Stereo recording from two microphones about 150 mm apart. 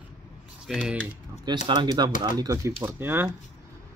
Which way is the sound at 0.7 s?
5° right (ahead or behind).